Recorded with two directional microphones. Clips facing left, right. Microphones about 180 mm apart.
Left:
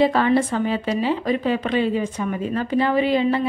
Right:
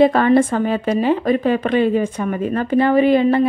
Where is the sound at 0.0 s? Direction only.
55° right (ahead or behind).